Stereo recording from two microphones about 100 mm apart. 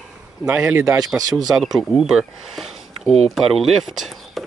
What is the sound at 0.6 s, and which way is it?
Speech, 30° right (ahead or behind).